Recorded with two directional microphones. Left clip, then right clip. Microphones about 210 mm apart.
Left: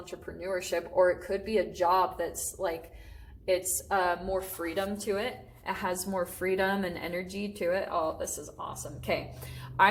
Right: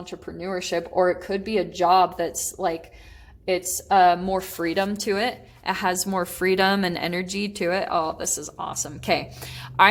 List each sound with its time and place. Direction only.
0.0 s a woman's voice: 55° right (ahead or behind)